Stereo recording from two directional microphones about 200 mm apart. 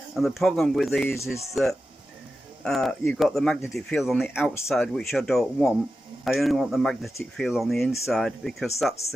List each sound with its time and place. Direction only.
0.1 s speech: centre (ahead or behind)